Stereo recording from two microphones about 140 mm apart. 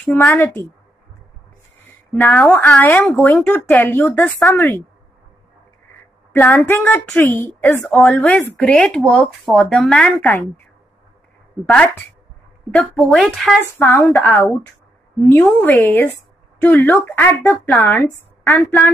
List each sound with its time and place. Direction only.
0.0 s speech: 15° left (ahead or behind)
2.1 s speech: 15° left (ahead or behind)
6.3 s speech: 15° left (ahead or behind)
11.6 s speech: 10° left (ahead or behind)
14.1 s speech: 15° left (ahead or behind)